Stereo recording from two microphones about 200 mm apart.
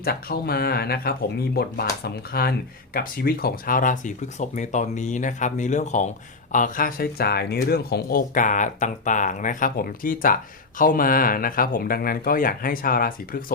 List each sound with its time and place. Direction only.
0.0 s speech: 50° left (ahead or behind)